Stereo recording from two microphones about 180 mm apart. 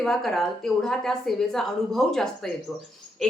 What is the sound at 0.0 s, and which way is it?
A woman's voice, centre (ahead or behind).